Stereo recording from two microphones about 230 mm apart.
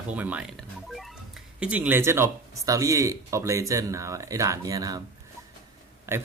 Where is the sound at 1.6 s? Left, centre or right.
Centre.